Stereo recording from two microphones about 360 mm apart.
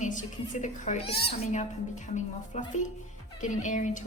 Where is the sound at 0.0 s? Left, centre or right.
Left.